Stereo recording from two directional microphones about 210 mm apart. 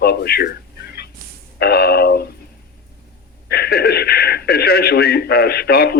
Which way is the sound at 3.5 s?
50° left (ahead or behind).